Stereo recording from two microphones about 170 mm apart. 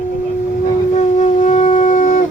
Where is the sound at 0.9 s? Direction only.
45° left (ahead or behind).